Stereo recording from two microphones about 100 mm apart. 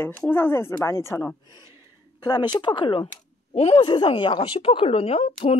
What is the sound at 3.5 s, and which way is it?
Speech, 90° left.